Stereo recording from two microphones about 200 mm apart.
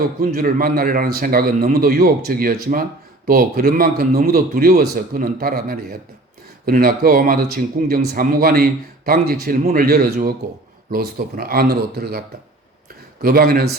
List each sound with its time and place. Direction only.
0.3 s a man's voice: 45° right (ahead or behind)
13.2 s a man's voice: 45° right (ahead or behind)